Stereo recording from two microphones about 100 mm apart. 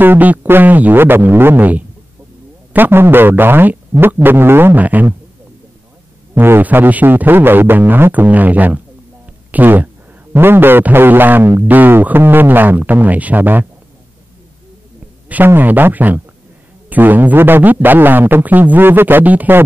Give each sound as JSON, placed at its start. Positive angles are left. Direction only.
{"t": 0.0, "sound": "a man's voice", "side_deg": -20}
{"t": 6.3, "sound": "a man's voice", "side_deg": -20}
{"t": 15.2, "sound": "a man's voice", "side_deg": -20}